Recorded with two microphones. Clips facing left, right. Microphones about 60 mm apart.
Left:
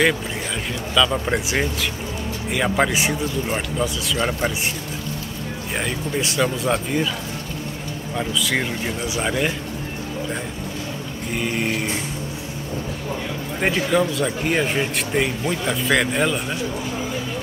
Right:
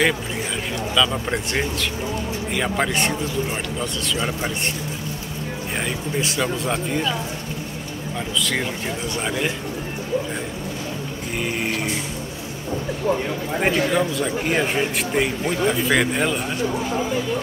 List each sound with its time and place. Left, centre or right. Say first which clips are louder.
0.9 s speech: left 2 dB; centre
4.2 s speech: left 5 dB; left
4.5 s speech: left 1 dB; centre
5.8 s speech: left 1 dB; centre
8.2 s speech: left 2 dB; centre
11.3 s speech: left 2 dB; centre
13.6 s speech: left 1 dB; centre